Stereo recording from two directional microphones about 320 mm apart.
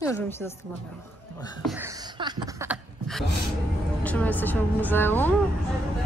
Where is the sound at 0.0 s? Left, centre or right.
Centre.